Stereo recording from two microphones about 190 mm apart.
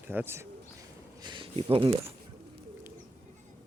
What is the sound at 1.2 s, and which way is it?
Speech, 25° right (ahead or behind).